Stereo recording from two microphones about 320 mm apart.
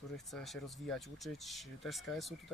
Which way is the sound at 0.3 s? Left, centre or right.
Centre.